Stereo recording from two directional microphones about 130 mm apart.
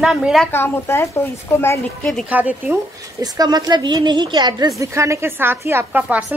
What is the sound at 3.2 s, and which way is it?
A woman's voice, 30° right (ahead or behind).